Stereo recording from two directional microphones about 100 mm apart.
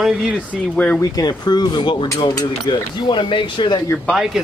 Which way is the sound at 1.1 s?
45° left (ahead or behind).